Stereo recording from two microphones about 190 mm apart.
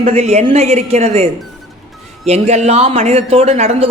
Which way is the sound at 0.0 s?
35° right (ahead or behind).